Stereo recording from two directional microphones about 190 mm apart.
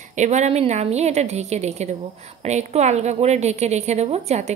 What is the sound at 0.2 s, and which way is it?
A woman's voice, 35° right (ahead or behind).